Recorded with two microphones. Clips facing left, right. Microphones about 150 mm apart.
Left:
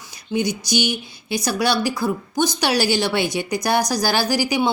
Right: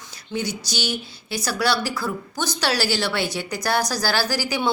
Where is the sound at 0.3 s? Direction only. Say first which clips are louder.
Left 6 dB; 15° left (ahead or behind).